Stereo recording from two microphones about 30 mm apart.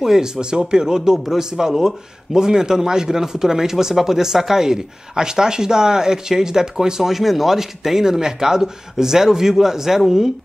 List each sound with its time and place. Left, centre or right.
0.0 s speech: centre
0.4 s speech: right
7.1 s speech: centre